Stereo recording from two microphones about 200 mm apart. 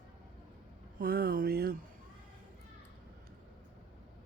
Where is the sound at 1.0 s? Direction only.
50° right (ahead or behind).